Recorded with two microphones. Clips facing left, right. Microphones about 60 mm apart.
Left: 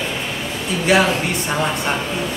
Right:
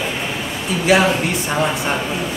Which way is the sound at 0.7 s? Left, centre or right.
Centre.